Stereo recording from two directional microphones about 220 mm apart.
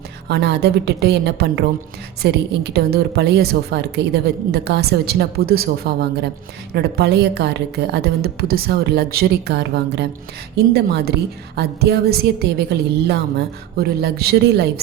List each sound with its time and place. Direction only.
0.3 s a woman's voice: 50° right (ahead or behind)
13.7 s a woman's voice: 45° right (ahead or behind)